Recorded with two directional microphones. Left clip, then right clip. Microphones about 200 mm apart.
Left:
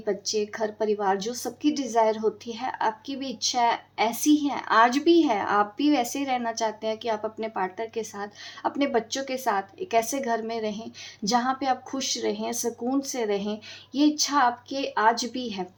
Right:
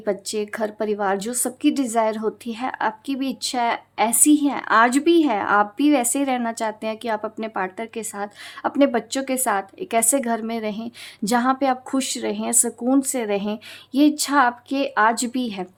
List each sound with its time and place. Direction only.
0.0 s a woman's voice: 40° right (ahead or behind)